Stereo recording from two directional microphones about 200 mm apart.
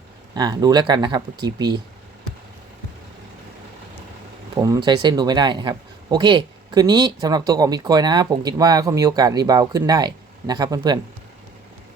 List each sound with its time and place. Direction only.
0.3 s a man's voice: 20° right (ahead or behind)
4.5 s a man's voice: 20° right (ahead or behind)